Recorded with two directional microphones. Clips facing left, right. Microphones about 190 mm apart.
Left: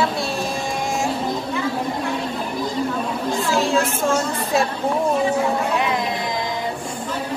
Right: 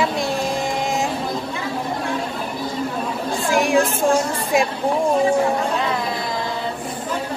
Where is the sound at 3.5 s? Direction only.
15° right (ahead or behind).